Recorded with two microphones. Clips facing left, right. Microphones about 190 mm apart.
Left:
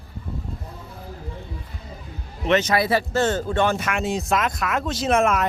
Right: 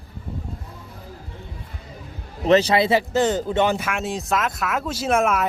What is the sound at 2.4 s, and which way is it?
Speech, 35° right (ahead or behind).